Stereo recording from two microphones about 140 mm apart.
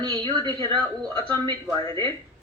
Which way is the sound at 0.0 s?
35° right (ahead or behind).